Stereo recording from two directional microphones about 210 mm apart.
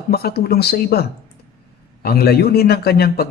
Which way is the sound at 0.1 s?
45° left (ahead or behind).